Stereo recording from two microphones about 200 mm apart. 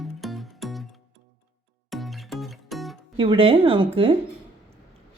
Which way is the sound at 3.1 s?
25° right (ahead or behind).